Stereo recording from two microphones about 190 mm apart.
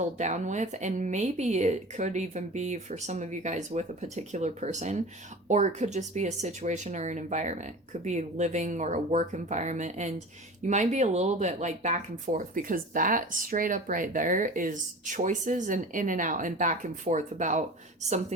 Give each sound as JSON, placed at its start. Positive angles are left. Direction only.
{"t": 0.0, "sound": "speech", "side_deg": -40}